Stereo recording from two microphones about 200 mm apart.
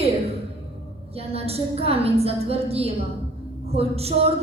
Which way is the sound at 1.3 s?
30° right (ahead or behind).